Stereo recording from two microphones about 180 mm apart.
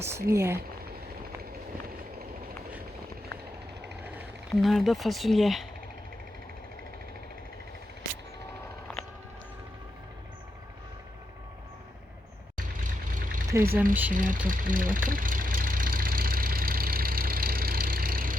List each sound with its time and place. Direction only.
0.0 s speech: 15° right (ahead or behind)
4.6 s speech: centre (ahead or behind)
12.5 s vehicle: 50° right (ahead or behind)
13.5 s speech: 15° right (ahead or behind)
14.1 s speech: 50° right (ahead or behind)
14.4 s vehicle: 50° right (ahead or behind)